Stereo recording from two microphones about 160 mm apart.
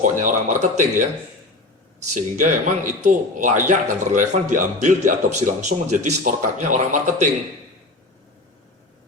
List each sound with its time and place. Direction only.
0.0 s a man's voice: 50° right (ahead or behind)
2.3 s a man's voice: 50° right (ahead or behind)